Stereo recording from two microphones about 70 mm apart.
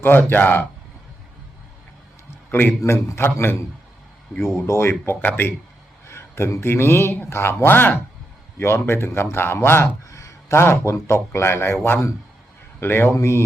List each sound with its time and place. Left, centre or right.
0.0 s a man's voice: left
2.5 s a man's voice: left
6.1 s speech: left
10.1 s a sound: left
11.3 s speech: left